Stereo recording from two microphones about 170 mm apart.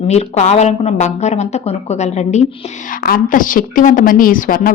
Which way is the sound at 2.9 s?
55° left (ahead or behind).